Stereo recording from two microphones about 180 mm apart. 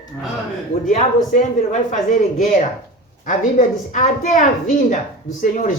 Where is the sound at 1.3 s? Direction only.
45° left (ahead or behind).